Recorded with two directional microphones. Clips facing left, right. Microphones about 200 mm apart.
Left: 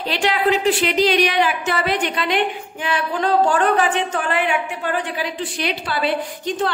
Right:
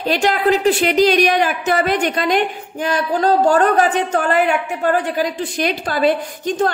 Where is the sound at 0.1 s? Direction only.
45° right (ahead or behind).